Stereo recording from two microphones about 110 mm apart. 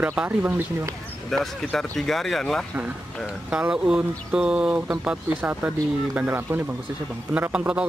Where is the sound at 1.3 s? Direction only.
5° left (ahead or behind).